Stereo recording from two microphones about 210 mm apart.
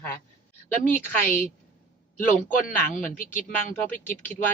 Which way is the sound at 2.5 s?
40° left (ahead or behind).